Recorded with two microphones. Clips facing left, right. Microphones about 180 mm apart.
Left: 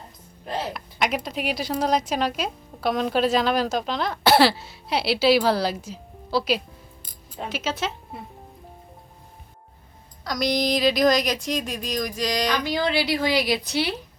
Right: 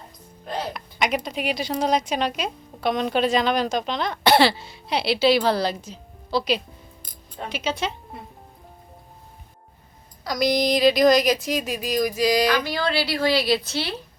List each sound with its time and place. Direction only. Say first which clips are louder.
0.4 s a woman's voice: even; centre (ahead or behind)
10.2 s a woman's voice: right 2 dB; centre (ahead or behind)
12.6 s a woman's voice: left 1 dB; 20° left (ahead or behind)